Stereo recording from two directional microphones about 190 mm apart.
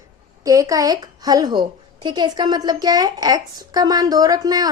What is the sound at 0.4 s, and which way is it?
A woman's voice, 15° right (ahead or behind).